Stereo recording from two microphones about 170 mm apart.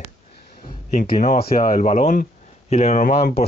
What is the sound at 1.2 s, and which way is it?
Speech, 45° left (ahead or behind).